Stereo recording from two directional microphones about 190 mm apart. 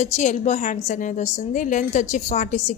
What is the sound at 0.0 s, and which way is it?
A woman's voice, 40° left (ahead or behind).